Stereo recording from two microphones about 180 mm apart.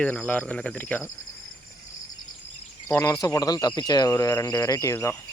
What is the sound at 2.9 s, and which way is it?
Speech, 15° left (ahead or behind).